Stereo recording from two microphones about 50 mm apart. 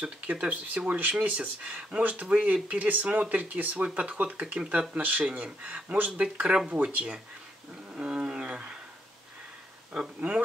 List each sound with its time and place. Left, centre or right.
0.0 s speech: right
3.7 s speech: right
7.9 s a sound: right